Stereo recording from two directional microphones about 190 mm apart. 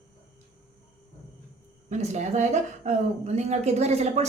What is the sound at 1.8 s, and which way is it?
A woman's voice, 40° right (ahead or behind).